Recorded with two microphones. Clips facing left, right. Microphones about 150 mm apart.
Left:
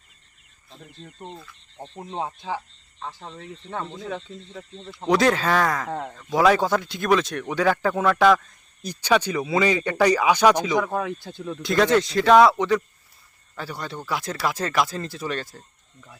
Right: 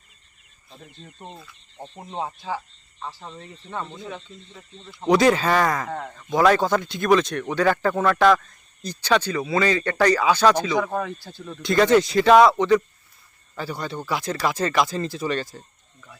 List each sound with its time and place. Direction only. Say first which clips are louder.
0.7 s speech: left 1 dB; 5° right (ahead or behind)
3.7 s speech: even; 5° right (ahead or behind)
3.9 s speech: left 4 dB; 35° left (ahead or behind)
5.0 s speech: right 2 dB; centre (ahead or behind)
11.2 s speech: left 5 dB; 15° left (ahead or behind)
11.6 s speech: right 2 dB; centre (ahead or behind)